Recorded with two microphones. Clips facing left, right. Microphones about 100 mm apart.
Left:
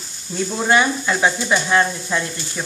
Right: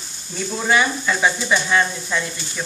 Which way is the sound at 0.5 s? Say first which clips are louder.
Left 2 dB; 5° left (ahead or behind).